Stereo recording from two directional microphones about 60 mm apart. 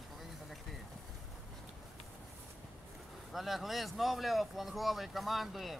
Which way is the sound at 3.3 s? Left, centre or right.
Centre.